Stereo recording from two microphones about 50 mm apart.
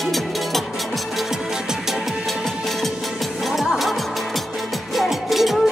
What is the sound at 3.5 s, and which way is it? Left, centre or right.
Music, centre.